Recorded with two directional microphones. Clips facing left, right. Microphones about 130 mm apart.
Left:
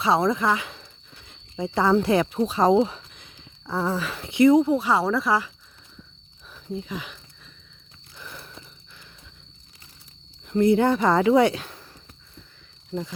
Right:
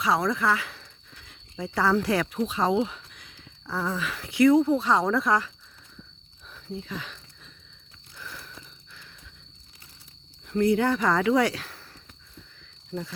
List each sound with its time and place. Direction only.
0.0 s speech: 25° left (ahead or behind); by 5.5 s 5° left (ahead or behind)
6.7 s speech: 15° left (ahead or behind)
8.2 s a sound: 20° left (ahead or behind)
10.5 s speech: 20° left (ahead or behind)
12.9 s speech: 15° left (ahead or behind)